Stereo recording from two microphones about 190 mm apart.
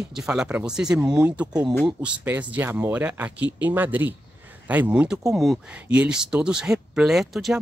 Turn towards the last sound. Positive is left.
turn(degrees=0)  # may be behind; listen again after turning